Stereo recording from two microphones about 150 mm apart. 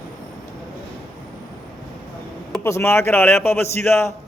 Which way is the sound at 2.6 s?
15° left (ahead or behind).